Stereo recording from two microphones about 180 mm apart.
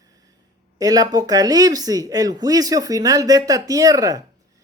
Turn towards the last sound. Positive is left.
turn(degrees=-20)  # may be behind; listen again after turning